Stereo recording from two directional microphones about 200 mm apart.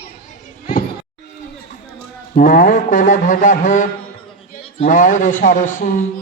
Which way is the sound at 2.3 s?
45° left (ahead or behind).